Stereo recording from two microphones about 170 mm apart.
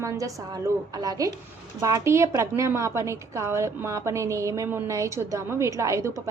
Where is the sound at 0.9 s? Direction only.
20° right (ahead or behind).